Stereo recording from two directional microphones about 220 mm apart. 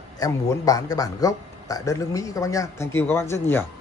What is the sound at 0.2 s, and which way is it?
Speech, 15° left (ahead or behind).